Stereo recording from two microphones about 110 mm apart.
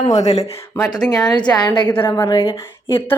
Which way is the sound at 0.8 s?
35° left (ahead or behind).